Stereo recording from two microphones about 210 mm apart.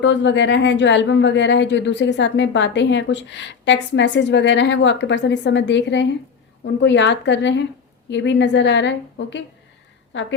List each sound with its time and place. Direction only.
0.0 s speech: 60° left (ahead or behind)